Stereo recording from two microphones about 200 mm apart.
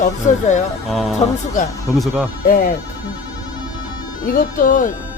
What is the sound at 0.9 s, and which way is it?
Speech, centre (ahead or behind).